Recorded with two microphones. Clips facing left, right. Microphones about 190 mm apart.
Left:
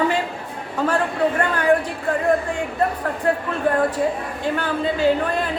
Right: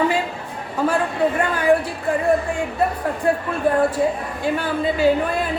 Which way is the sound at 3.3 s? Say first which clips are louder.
Right 1 dB; 10° right (ahead or behind).